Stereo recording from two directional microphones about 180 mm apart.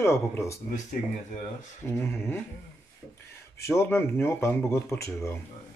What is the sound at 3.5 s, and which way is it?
Speech, 15° left (ahead or behind).